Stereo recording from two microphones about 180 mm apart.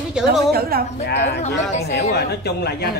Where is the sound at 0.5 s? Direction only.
55° right (ahead or behind).